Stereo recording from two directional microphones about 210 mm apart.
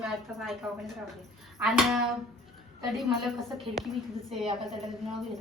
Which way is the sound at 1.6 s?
Centre (ahead or behind).